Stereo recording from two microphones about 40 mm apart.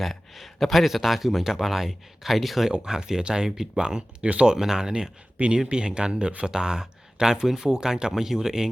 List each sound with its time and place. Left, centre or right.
0.0 s speech: centre
2.6 s speech: centre